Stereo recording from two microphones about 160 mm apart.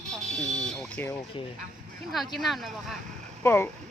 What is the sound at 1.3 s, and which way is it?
Speech, 30° left (ahead or behind).